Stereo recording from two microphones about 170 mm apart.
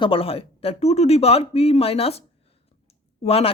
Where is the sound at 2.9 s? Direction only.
35° left (ahead or behind).